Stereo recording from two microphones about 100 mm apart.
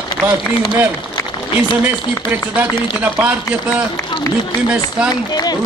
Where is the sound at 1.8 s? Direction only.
20° right (ahead or behind).